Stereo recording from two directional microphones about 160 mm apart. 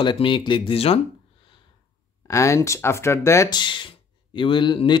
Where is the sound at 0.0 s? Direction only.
30° left (ahead or behind).